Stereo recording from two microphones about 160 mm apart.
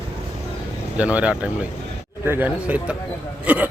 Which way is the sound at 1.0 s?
10° right (ahead or behind).